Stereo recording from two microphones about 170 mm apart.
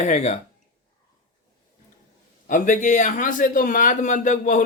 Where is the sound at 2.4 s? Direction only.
50° left (ahead or behind).